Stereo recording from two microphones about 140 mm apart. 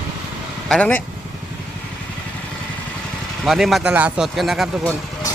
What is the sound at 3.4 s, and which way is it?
Speech, centre (ahead or behind).